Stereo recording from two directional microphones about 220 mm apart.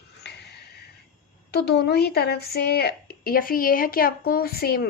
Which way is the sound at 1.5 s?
50° left (ahead or behind).